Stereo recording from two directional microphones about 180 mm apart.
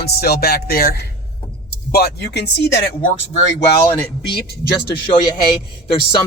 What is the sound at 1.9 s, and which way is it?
Speech, 60° left (ahead or behind).